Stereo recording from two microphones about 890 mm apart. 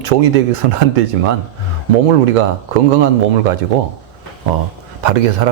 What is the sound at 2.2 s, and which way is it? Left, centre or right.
Speech, right.